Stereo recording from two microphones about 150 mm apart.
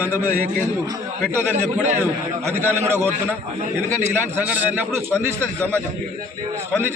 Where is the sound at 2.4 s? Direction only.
15° right (ahead or behind).